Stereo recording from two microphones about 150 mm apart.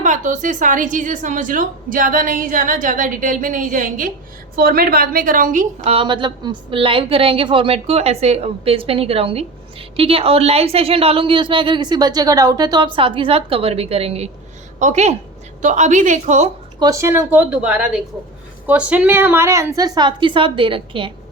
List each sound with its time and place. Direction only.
0.0 s a woman's voice: 55° right (ahead or behind)
4.5 s a woman's voice: 80° right; by 5.9 s 60° right (ahead or behind)
5.9 s a woman's voice: 35° right (ahead or behind); by 16.5 s 50° right (ahead or behind)
16.8 s a woman's voice: 20° right (ahead or behind)